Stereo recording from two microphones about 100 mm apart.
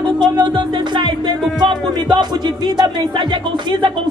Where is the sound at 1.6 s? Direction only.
50° right (ahead or behind).